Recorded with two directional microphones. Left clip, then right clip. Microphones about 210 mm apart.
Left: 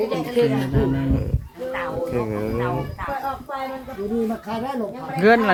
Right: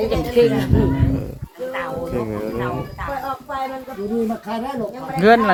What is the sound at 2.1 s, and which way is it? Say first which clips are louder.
Speech: even; 10° left (ahead or behind).